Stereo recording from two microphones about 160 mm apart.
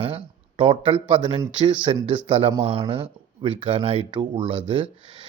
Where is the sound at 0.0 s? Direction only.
35° right (ahead or behind).